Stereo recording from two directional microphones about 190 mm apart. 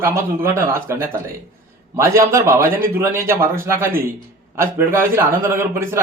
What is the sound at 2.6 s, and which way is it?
Speech, 45° right (ahead or behind).